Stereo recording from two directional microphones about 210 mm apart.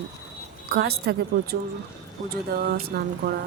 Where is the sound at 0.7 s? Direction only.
50° right (ahead or behind).